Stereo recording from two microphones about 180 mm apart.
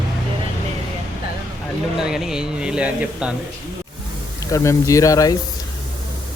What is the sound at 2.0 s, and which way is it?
Speech, 5° right (ahead or behind).